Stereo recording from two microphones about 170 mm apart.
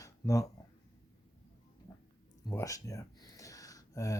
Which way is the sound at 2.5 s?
15° left (ahead or behind).